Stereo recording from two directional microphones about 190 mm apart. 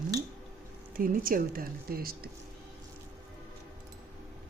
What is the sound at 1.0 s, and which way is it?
Speech, 50° right (ahead or behind).